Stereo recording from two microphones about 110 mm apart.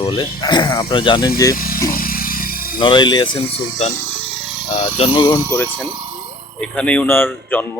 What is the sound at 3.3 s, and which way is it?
Speech, 90° left.